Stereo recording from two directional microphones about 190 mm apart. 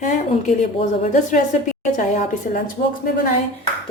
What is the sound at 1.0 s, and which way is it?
Speech, 40° left (ahead or behind).